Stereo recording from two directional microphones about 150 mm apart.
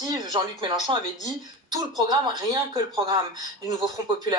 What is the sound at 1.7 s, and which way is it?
Speech, 25° right (ahead or behind).